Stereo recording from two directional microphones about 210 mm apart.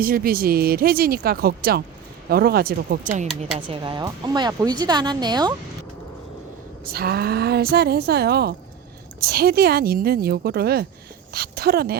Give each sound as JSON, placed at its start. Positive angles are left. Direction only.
{"t": 0.0, "sound": "speech", "side_deg": -45}
{"t": 3.2, "sound": "speech", "side_deg": 0}
{"t": 3.7, "sound": "speech", "side_deg": -20}
{"t": 6.8, "sound": "speech", "side_deg": -45}